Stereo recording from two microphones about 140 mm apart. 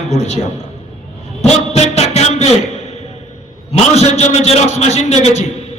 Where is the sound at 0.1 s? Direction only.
50° left (ahead or behind).